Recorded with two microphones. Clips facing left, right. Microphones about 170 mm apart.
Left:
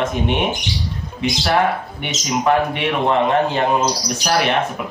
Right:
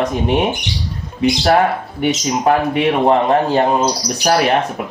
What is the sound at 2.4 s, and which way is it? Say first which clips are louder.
Speech: right 4 dB; 40° right (ahead or behind).